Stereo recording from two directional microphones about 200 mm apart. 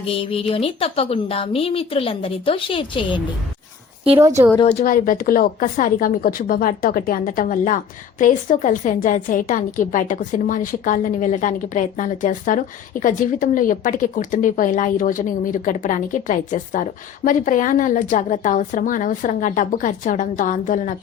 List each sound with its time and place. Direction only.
0.0 s a woman's voice: 30° left (ahead or behind)
4.5 s a woman's voice: 35° left (ahead or behind)